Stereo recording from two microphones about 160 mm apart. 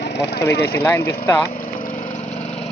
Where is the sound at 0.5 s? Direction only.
90° left.